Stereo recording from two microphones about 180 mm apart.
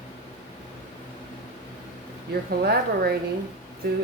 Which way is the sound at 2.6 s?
65° right (ahead or behind).